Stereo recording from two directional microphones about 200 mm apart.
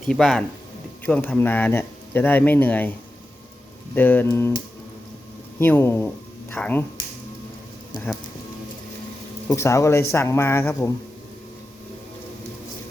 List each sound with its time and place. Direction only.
0.0 s speech: centre (ahead or behind)
3.9 s speech: 10° left (ahead or behind)
9.5 s speech: 15° left (ahead or behind)